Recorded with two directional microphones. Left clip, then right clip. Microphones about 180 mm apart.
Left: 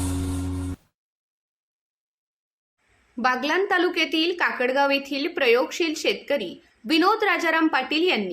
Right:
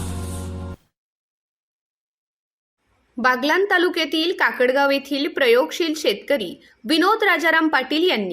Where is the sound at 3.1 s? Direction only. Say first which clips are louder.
Right 4 dB; 25° right (ahead or behind).